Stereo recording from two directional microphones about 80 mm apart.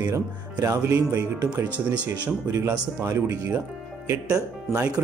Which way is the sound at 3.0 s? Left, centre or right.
Right.